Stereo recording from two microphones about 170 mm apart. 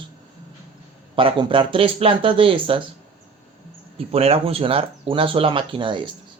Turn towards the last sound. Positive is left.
turn(degrees=-30)  # may be behind; listen again after turning